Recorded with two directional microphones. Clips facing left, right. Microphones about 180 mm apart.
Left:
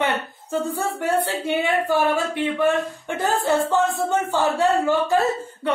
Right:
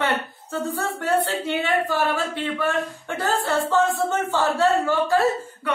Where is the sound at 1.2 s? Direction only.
15° left (ahead or behind).